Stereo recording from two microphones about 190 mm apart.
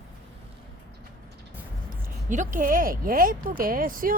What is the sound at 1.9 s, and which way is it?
Speech, 40° right (ahead or behind).